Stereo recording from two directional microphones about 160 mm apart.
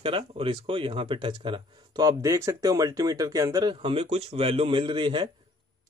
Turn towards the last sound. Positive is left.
turn(degrees=-30)  # may be behind; listen again after turning